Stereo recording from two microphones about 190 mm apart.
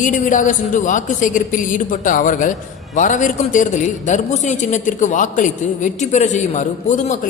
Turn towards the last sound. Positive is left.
turn(degrees=40)  # may be behind; listen again after turning